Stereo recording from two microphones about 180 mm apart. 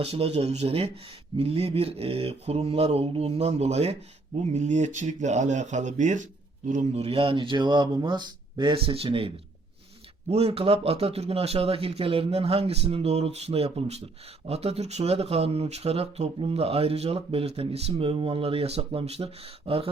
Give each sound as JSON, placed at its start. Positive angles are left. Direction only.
{"t": 0.0, "sound": "speech", "side_deg": -35}